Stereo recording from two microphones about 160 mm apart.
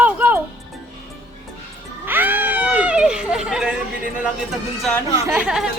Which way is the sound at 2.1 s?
10° right (ahead or behind).